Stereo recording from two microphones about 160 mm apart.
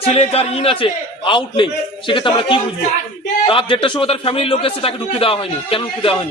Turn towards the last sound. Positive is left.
turn(degrees=35)  # may be behind; listen again after turning